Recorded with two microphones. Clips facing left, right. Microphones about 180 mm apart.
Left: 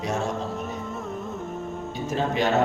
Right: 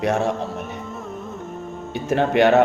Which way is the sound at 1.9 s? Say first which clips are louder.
Right 8 dB; 65° right (ahead or behind).